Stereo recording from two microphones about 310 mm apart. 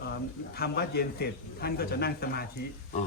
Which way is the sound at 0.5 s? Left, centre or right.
Left.